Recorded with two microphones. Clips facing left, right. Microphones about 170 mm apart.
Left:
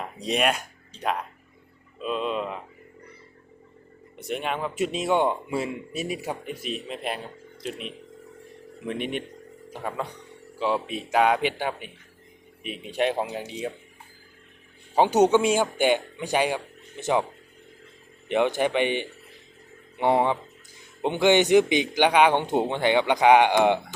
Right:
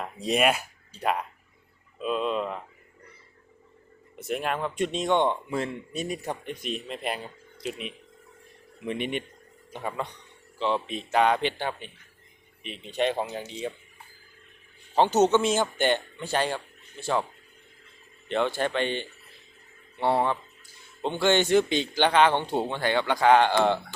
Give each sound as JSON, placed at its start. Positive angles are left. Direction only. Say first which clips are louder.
{"t": 0.0, "sound": "speech", "louder": "right 1 dB", "side_deg": 0}
{"t": 4.2, "sound": "a man's voice", "louder": "even", "side_deg": 0}
{"t": 14.9, "sound": "a man's voice", "louder": "left 2 dB", "side_deg": 10}
{"t": 18.3, "sound": "a man's voice", "louder": "left 4 dB", "side_deg": 15}